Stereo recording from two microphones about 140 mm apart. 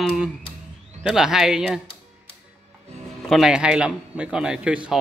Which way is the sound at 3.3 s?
5° right (ahead or behind).